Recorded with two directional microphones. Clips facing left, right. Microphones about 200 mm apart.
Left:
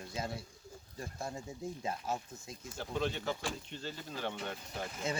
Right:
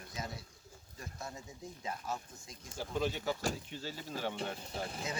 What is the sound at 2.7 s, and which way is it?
Speech, 5° right (ahead or behind).